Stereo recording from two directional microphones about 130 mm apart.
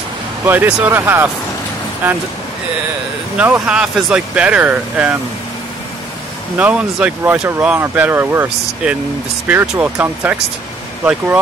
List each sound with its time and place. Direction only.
0.5 s speech: 10° right (ahead or behind)
3.3 s speech: 10° right (ahead or behind)
6.6 s speech: 10° right (ahead or behind)